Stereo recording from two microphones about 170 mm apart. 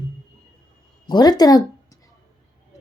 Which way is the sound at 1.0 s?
25° left (ahead or behind).